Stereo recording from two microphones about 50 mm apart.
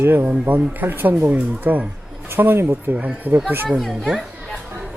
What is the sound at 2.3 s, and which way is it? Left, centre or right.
Speech, right.